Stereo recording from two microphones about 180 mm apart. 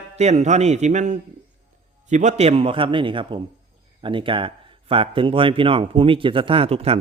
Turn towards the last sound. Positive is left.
turn(degrees=-35)  # may be behind; listen again after turning